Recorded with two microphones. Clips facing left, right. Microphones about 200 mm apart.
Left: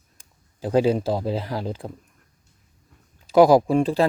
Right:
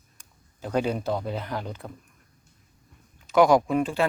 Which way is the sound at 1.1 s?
30° left (ahead or behind).